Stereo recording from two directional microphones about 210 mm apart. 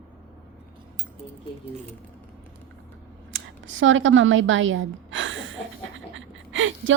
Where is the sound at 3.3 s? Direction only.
65° right (ahead or behind).